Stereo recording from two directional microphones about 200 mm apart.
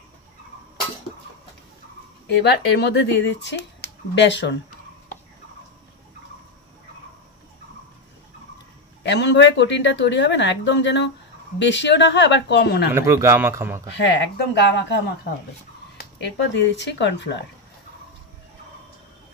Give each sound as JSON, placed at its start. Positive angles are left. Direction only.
{"t": 2.2, "sound": "speech", "side_deg": 60}
{"t": 9.0, "sound": "speech", "side_deg": 60}
{"t": 12.9, "sound": "speech", "side_deg": -15}
{"t": 13.9, "sound": "speech", "side_deg": 65}
{"t": 16.5, "sound": "speech", "side_deg": 60}